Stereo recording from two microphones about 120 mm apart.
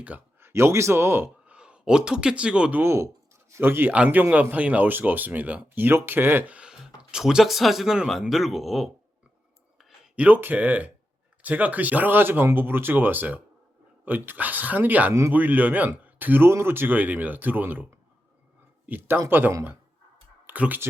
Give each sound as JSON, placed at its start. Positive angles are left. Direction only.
{"t": 0.0, "sound": "speech", "side_deg": -15}
{"t": 1.5, "sound": "speech", "side_deg": -10}
{"t": 10.2, "sound": "speech", "side_deg": -15}